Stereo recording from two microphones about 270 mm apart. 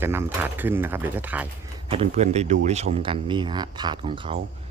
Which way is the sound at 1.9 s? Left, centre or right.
Right.